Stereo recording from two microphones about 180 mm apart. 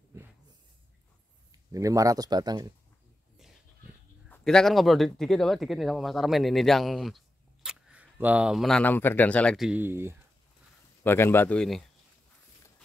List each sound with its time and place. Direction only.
1.5 s speech: 20° right (ahead or behind)
4.3 s speech: 5° left (ahead or behind); by 10.1 s 15° right (ahead or behind)
11.1 s a man's voice: 10° left (ahead or behind)